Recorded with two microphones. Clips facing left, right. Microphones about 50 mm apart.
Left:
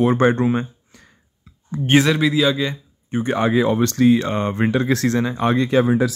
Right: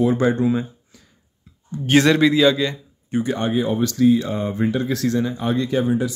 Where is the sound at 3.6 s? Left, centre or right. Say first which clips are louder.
Left 3 dB; left.